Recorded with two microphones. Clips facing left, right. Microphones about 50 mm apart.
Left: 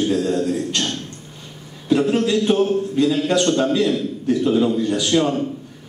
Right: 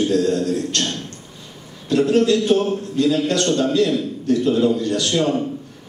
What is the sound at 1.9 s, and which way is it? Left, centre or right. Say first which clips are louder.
A man's voice: right 2 dB; centre.